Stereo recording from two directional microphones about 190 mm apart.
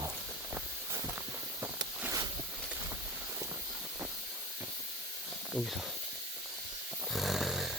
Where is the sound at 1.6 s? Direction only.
15° right (ahead or behind).